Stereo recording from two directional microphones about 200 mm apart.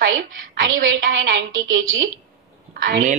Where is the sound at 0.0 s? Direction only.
60° right (ahead or behind).